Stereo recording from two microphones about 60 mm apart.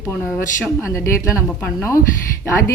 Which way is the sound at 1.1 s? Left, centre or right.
Left.